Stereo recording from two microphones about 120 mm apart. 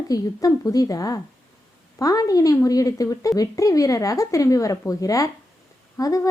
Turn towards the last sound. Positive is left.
turn(degrees=30)  # may be behind; listen again after turning